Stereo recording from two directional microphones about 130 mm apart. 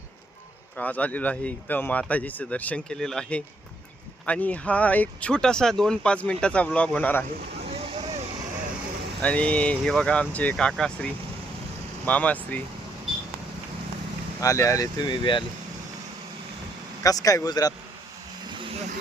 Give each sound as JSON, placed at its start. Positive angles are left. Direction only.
{"t": 0.8, "sound": "speech", "side_deg": 10}
{"t": 7.6, "sound": "vehicle", "side_deg": -55}
{"t": 9.2, "sound": "speech", "side_deg": 10}
{"t": 14.4, "sound": "speech", "side_deg": 25}
{"t": 17.0, "sound": "a man's voice", "side_deg": 25}
{"t": 18.4, "sound": "vehicle", "side_deg": -40}